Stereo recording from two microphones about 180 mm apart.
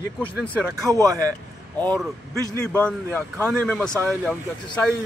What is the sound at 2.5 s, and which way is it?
A man's voice, 10° left (ahead or behind).